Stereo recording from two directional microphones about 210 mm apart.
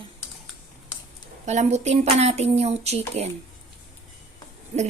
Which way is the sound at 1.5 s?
35° right (ahead or behind).